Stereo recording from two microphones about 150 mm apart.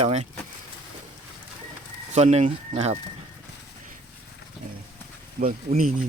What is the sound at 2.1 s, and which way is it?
Speech, 45° right (ahead or behind).